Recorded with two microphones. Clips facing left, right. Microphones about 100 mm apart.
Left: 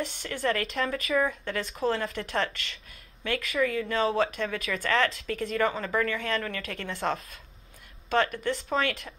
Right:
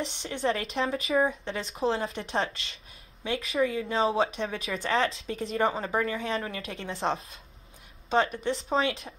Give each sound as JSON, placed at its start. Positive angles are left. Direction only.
{"t": 0.0, "sound": "speech", "side_deg": -25}
{"t": 8.5, "sound": "speech", "side_deg": -30}